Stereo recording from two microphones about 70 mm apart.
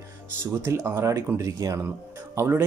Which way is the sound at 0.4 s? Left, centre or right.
Right.